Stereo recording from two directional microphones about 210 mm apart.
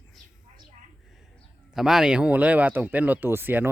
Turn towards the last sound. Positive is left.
turn(degrees=-10)  # may be behind; listen again after turning